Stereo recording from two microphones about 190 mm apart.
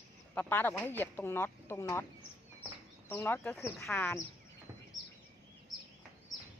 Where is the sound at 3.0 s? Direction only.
10° left (ahead or behind).